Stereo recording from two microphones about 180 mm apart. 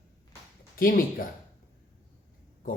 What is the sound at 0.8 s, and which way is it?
Speech, 50° left (ahead or behind).